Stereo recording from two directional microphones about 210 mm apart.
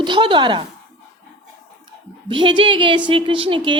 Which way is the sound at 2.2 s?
25° right (ahead or behind).